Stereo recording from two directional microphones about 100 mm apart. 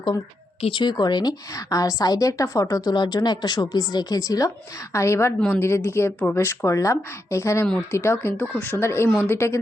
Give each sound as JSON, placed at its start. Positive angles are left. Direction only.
{"t": 0.7, "sound": "a woman's voice", "side_deg": 45}